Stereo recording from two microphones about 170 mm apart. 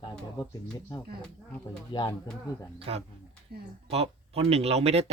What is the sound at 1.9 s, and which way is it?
Speech, 30° left (ahead or behind).